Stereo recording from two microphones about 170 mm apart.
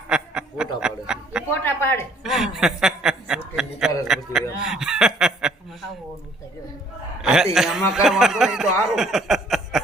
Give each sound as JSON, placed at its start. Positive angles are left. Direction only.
{"t": 0.1, "sound": "snicker", "side_deg": -5}
{"t": 0.8, "sound": "chuckle", "side_deg": -5}
{"t": 1.6, "sound": "a sound", "side_deg": 15}
{"t": 2.2, "sound": "chuckle", "side_deg": 0}
{"t": 4.6, "sound": "snicker", "side_deg": -5}
{"t": 7.2, "sound": "a sound", "side_deg": -5}
{"t": 7.5, "sound": "speech", "side_deg": 0}